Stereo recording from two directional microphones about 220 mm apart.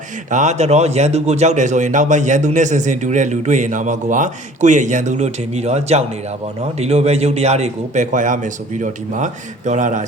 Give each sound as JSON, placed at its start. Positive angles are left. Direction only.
{"t": 0.3, "sound": "a man's voice", "side_deg": -35}